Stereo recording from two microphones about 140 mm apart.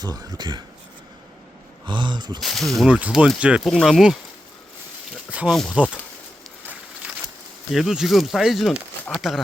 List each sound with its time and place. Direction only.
0.0 s speech: 25° right (ahead or behind)
1.9 s speech: 35° right (ahead or behind)
2.4 s speech: centre (ahead or behind)
5.5 s speech: centre (ahead or behind)
7.0 s a sound: 10° right (ahead or behind)
7.7 s speech: centre (ahead or behind)